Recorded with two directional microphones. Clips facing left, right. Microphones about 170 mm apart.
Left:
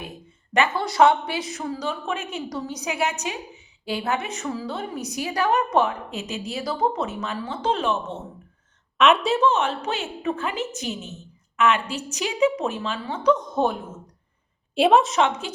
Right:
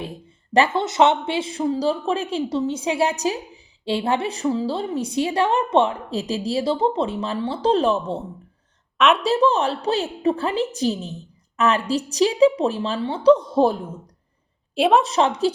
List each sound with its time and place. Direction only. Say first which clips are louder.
0.0 s a woman's voice: right 5 dB; 30° right (ahead or behind)
9.0 s a woman's voice: right 1 dB; centre (ahead or behind)
9.4 s a woman's voice: right 2 dB; 35° right (ahead or behind)
14.8 s a woman's voice: even; centre (ahead or behind)
15.1 s a woman's voice: right 4 dB; 35° right (ahead or behind)